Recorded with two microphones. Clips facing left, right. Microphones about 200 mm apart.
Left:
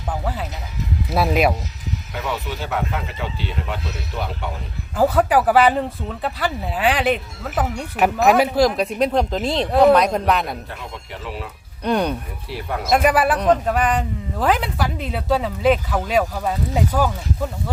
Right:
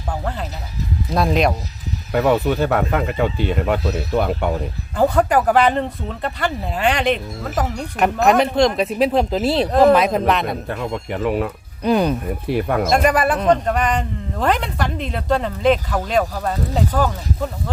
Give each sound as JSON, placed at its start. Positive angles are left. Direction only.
{"t": 0.1, "sound": "speech", "side_deg": 5}
{"t": 2.1, "sound": "speech", "side_deg": -55}
{"t": 4.9, "sound": "speech", "side_deg": 5}
{"t": 10.7, "sound": "speech", "side_deg": -60}
{"t": 11.8, "sound": "speech", "side_deg": -5}
{"t": 12.5, "sound": "speech", "side_deg": -55}
{"t": 12.9, "sound": "speech", "side_deg": 5}